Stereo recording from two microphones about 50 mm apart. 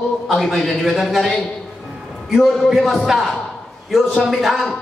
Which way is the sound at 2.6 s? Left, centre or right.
Centre.